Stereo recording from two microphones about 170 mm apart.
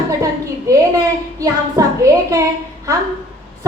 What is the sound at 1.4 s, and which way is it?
A woman's voice, 20° right (ahead or behind).